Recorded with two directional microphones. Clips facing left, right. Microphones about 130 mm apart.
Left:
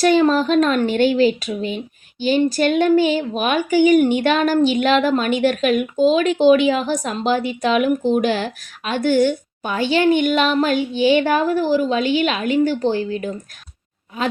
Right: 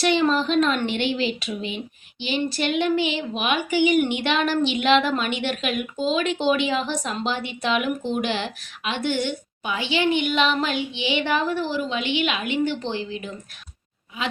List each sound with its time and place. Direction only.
0.0 s a woman's voice: 40° left (ahead or behind)